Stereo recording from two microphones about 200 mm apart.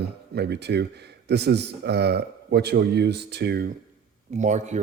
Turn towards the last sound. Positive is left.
turn(degrees=-35)  # may be behind; listen again after turning